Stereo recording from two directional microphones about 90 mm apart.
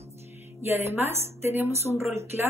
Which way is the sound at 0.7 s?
30° right (ahead or behind).